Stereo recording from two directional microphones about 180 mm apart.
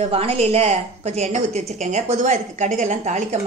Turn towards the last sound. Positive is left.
turn(degrees=-40)  # may be behind; listen again after turning